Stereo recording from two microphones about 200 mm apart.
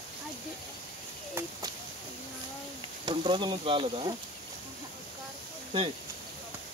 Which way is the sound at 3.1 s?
20° right (ahead or behind).